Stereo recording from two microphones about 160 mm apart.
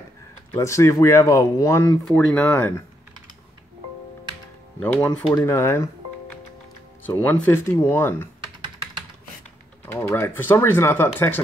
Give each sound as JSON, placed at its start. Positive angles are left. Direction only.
{"t": 0.5, "sound": "speech", "side_deg": 20}
{"t": 4.7, "sound": "speech", "side_deg": 5}
{"t": 5.3, "sound": "speech", "side_deg": 15}
{"t": 7.2, "sound": "speech", "side_deg": 10}
{"t": 8.5, "sound": "computer keyboard", "side_deg": -30}
{"t": 9.8, "sound": "speech", "side_deg": 15}